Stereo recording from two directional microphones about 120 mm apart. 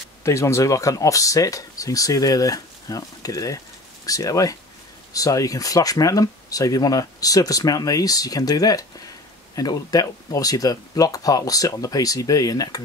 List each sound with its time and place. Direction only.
0.2 s speech: 25° left (ahead or behind)